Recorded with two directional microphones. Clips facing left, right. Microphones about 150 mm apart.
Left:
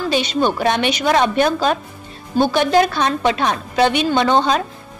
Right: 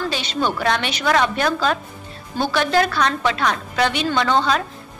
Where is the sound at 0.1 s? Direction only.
15° left (ahead or behind).